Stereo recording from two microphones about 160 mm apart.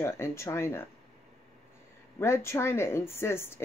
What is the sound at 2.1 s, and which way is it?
A woman's voice, 15° left (ahead or behind).